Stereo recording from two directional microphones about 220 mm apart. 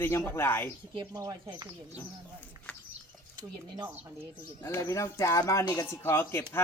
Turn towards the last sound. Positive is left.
turn(degrees=10)  # may be behind; listen again after turning